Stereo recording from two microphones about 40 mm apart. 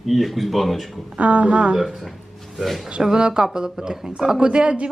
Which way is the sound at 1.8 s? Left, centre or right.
Centre.